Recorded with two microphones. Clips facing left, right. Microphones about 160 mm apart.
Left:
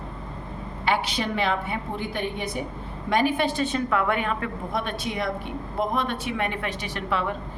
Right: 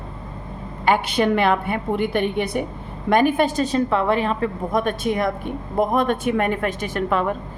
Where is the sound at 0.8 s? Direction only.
50° right (ahead or behind).